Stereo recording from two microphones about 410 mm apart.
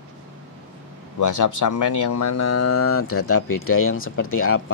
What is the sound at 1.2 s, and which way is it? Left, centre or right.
Speech, left.